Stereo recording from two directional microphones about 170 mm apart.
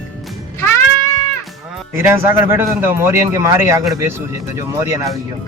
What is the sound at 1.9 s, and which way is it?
Speech, 15° right (ahead or behind).